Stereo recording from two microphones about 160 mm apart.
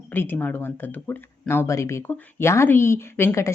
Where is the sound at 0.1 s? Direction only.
15° left (ahead or behind).